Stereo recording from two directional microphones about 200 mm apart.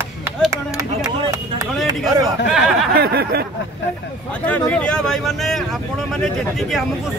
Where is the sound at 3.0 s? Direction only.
50° right (ahead or behind).